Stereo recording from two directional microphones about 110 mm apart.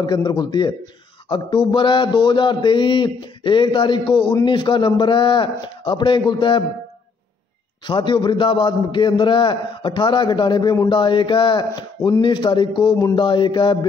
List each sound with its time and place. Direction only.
0.0 s a man's voice: 40° left (ahead or behind)
7.8 s a man's voice: 45° left (ahead or behind)